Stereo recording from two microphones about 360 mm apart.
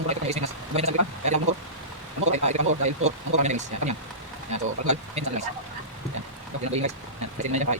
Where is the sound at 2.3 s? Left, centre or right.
Centre.